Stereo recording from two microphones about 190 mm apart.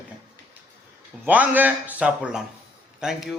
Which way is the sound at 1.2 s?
10° right (ahead or behind).